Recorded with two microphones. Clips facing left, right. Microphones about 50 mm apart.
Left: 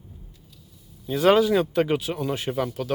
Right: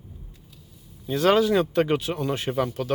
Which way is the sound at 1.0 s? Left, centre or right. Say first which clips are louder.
Left 1 dB; centre.